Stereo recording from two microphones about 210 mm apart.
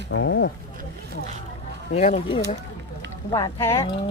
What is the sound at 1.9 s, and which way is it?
Speech, 35° left (ahead or behind).